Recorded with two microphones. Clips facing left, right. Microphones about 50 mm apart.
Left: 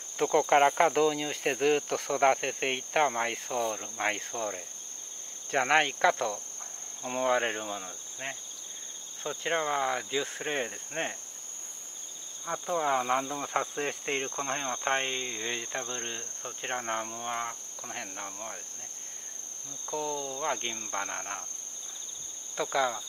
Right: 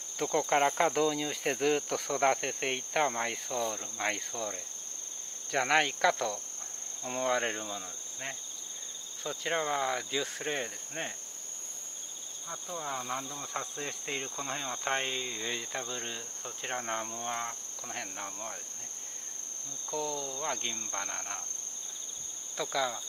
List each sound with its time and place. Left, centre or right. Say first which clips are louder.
0.2 s speech: left 5 dB; left
12.4 s speech: left 10 dB; left
14.3 s speech: left 4 dB; centre
19.9 s speech: left 2 dB; centre
22.6 s speech: left 4 dB; left